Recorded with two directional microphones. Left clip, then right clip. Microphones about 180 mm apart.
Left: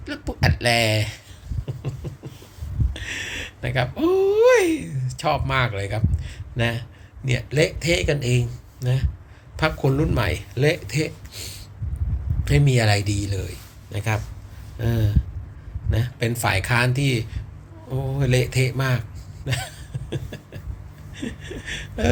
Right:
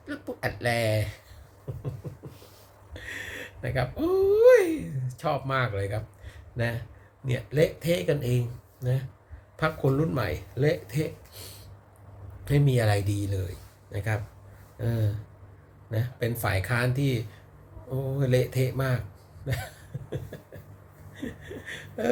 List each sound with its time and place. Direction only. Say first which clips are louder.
0.0 s speech: left 7 dB; 20° right (ahead or behind)
1.8 s beatboxing: left 4 dB; 20° right (ahead or behind)
2.9 s speech: left 7 dB; 20° right (ahead or behind)
19.5 s a sound: left 6 dB; 20° right (ahead or behind)
21.2 s speech: left 5 dB; 20° right (ahead or behind)